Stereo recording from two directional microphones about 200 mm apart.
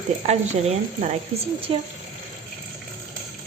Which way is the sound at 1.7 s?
25° right (ahead or behind).